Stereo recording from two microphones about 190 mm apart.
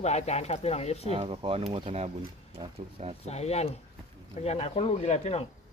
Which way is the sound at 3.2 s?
35° left (ahead or behind).